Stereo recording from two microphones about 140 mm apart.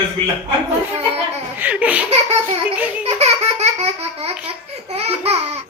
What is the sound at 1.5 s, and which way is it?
Speech, 10° right (ahead or behind).